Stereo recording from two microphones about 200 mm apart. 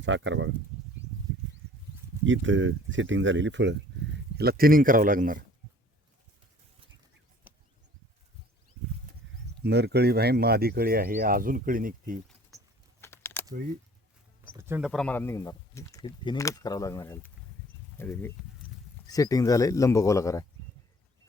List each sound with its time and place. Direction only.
0.0 s speech: 70° right (ahead or behind)
2.2 s speech: 70° right (ahead or behind)
4.4 s speech: 50° right (ahead or behind)
7.5 s a sound: 10° right (ahead or behind)
9.6 s speech: 55° right (ahead or behind)
13.0 s a sound: 10° left (ahead or behind)
14.5 s speech: 10° right (ahead or behind); by 20.4 s 15° left (ahead or behind)